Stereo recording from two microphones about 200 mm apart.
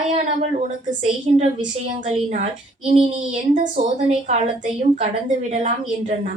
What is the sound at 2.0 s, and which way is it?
A woman's voice, 35° right (ahead or behind).